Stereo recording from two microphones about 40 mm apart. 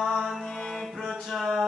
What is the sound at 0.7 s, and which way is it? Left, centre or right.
Music, centre.